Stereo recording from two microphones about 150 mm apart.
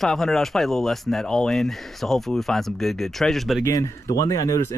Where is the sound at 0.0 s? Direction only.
Centre (ahead or behind).